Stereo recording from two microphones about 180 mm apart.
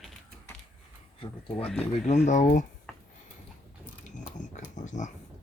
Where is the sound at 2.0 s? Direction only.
40° left (ahead or behind).